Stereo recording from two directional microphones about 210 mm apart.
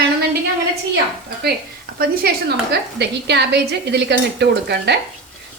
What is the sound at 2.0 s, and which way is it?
A woman's voice, 45° right (ahead or behind).